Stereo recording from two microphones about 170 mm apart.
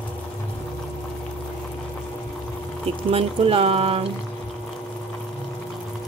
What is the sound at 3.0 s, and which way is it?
Speech, 35° right (ahead or behind).